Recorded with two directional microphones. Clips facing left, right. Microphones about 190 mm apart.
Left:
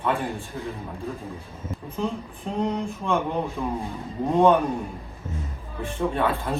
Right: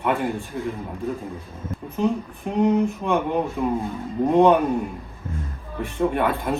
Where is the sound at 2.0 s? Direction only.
15° right (ahead or behind).